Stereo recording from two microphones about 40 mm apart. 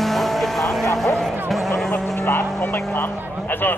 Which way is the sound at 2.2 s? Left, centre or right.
Left.